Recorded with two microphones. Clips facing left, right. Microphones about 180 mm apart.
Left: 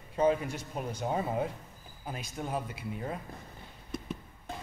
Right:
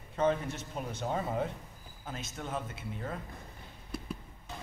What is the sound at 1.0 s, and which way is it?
Speech, 10° left (ahead or behind).